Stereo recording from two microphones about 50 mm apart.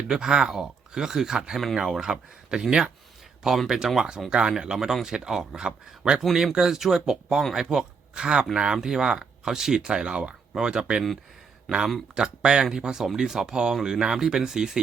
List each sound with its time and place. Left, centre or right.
0.1 s speech: centre
11.7 s speech: centre
12.1 s speech: centre